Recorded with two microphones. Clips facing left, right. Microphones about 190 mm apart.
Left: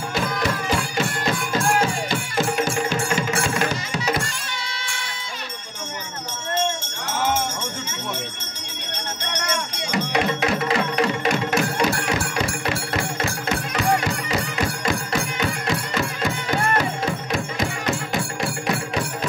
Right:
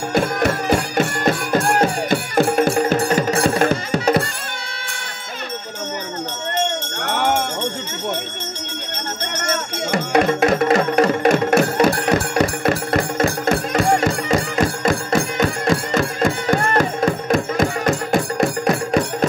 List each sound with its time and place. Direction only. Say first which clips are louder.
0.1 s music: right 7 dB; 50° right (ahead or behind)
3.6 s music: right 7 dB; 55° right (ahead or behind)
7.1 s jingle bell: right 4 dB; 60° right (ahead or behind)
9.4 s music: right 5 dB; 50° right (ahead or behind)
11.9 s music: right 6 dB; 40° right (ahead or behind)